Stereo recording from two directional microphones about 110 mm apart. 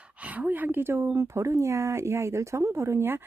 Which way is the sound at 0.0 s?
10° right (ahead or behind).